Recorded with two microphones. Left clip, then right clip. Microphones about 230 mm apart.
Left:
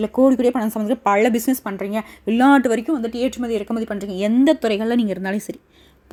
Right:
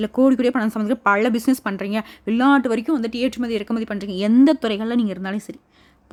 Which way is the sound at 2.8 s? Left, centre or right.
Right.